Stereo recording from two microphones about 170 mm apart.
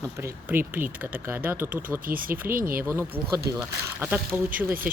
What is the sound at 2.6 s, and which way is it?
Speech, 55° right (ahead or behind).